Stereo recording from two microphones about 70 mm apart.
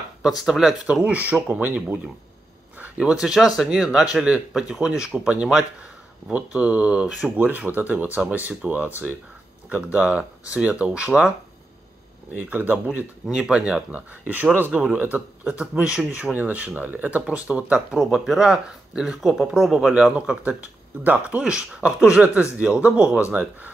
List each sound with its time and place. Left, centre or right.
0.4 s speech: centre
7.3 s speech: right
12.4 s speech: right
13.3 s speech: centre
15.4 s speech: centre
21.4 s speech: centre